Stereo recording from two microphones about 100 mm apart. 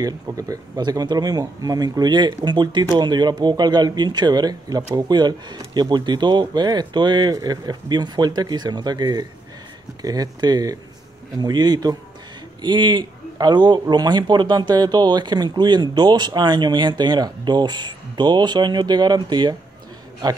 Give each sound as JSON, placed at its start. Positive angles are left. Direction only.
{"t": 0.0, "sound": "a man's voice", "side_deg": -35}